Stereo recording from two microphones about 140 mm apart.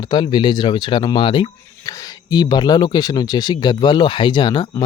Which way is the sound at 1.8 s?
25° left (ahead or behind).